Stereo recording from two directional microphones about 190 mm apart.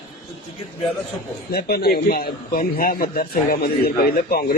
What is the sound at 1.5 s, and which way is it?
A man's voice, 55° left (ahead or behind).